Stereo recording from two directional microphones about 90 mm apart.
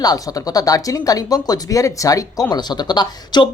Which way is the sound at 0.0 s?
45° left (ahead or behind).